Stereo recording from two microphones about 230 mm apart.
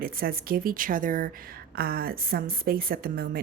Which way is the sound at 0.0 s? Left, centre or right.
Right.